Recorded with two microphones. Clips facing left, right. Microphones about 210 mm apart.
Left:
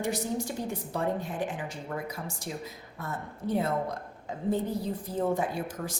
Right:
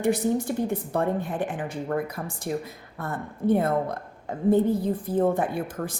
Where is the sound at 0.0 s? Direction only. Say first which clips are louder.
Right 7 dB; 55° right (ahead or behind).